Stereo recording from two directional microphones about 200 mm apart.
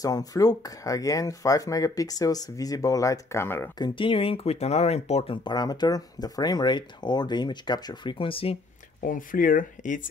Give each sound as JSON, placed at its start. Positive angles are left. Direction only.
{"t": 0.0, "sound": "speech", "side_deg": 20}
{"t": 9.0, "sound": "speech", "side_deg": 40}